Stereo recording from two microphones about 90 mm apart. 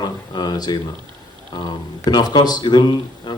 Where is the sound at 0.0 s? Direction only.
50° left (ahead or behind).